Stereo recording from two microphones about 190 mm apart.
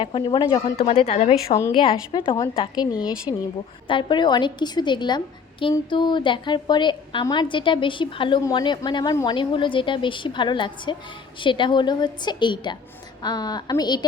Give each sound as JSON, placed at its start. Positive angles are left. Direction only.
{"t": 0.0, "sound": "a woman's voice", "side_deg": 25}
{"t": 1.5, "sound": "a woman's voice", "side_deg": 20}